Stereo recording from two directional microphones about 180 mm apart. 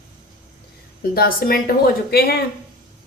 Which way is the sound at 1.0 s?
55° left (ahead or behind).